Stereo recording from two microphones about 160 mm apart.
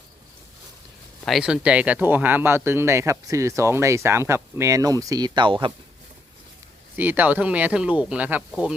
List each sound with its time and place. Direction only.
1.2 s speech: centre (ahead or behind); by 5.7 s 30° right (ahead or behind)
6.9 s speech: 10° right (ahead or behind)